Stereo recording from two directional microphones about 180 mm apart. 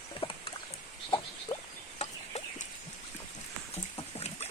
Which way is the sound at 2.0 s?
35° left (ahead or behind).